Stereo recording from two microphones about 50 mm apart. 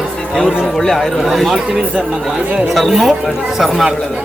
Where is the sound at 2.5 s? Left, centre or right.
Right.